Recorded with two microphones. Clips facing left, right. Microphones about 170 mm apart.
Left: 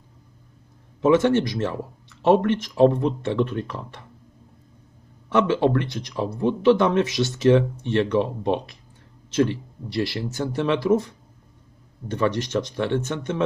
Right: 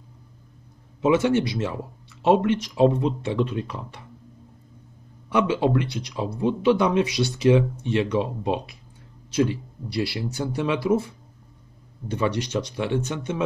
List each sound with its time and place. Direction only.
1.0 s speech: 10° right (ahead or behind)
5.3 s speech: 15° right (ahead or behind)